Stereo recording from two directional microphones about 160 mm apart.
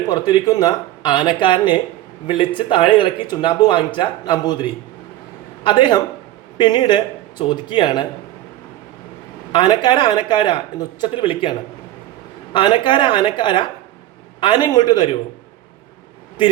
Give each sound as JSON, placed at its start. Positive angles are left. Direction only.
{"t": 0.1, "sound": "speech", "side_deg": 25}
{"t": 9.5, "sound": "speech", "side_deg": 30}
{"t": 12.5, "sound": "speech", "side_deg": 30}